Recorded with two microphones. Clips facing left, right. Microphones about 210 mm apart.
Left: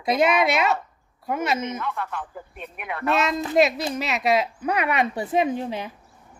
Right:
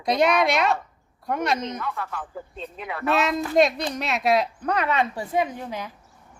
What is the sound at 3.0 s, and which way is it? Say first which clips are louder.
A woman's voice: even; centre (ahead or behind).